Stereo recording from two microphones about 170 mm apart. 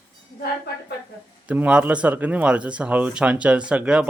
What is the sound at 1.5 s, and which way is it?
Speech, 5° right (ahead or behind).